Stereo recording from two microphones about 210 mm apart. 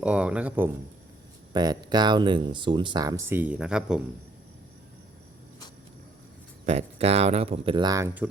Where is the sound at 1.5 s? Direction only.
20° right (ahead or behind); by 4.0 s 5° right (ahead or behind).